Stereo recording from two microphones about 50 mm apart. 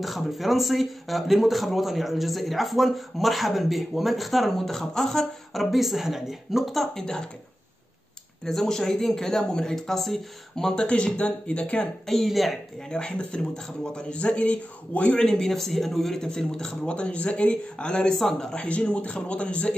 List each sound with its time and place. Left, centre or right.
0.0 s a man's voice: centre
8.5 s speech: centre
12.1 s a man's voice: centre
12.9 s a man's voice: centre
15.1 s speech: centre
18.6 s a man's voice: left